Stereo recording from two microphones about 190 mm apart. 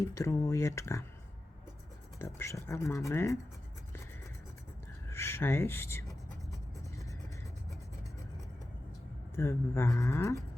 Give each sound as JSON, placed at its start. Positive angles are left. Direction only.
{"t": 0.0, "sound": "speech", "side_deg": 15}
{"t": 2.1, "sound": "speech", "side_deg": 15}
{"t": 5.0, "sound": "speech", "side_deg": 15}
{"t": 9.3, "sound": "speech", "side_deg": 15}